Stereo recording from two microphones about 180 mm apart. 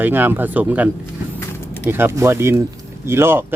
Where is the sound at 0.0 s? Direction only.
10° right (ahead or behind).